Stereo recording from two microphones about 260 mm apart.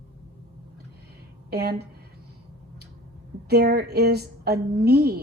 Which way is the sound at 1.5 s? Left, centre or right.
Right.